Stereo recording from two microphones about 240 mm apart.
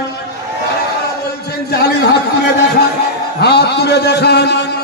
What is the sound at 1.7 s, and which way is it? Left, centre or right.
Speech, left.